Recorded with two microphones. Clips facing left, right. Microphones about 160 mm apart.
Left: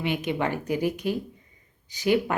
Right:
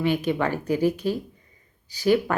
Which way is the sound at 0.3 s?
20° left (ahead or behind).